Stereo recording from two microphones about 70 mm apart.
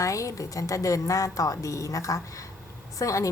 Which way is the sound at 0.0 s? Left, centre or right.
Left.